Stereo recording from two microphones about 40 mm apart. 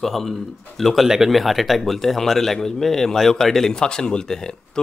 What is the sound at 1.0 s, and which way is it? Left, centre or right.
Speech, centre.